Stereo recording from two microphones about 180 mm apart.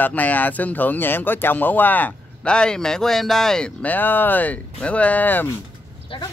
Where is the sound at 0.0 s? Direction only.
10° left (ahead or behind).